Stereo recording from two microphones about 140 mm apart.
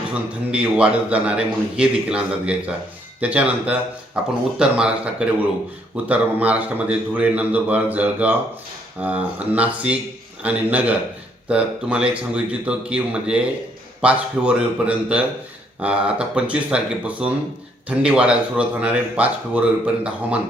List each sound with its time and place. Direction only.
0.1 s a man's voice: 10° right (ahead or behind)